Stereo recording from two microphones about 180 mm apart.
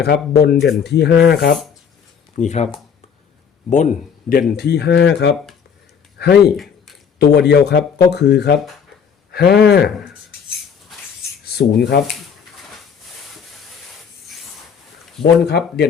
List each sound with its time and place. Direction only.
0.0 s speech: 65° left (ahead or behind)
2.3 s speech: 40° left (ahead or behind)
3.7 s speech: 45° left (ahead or behind); by 9.9 s 65° left (ahead or behind)
11.4 s speech: 60° left (ahead or behind)
15.4 s speech: 65° left (ahead or behind)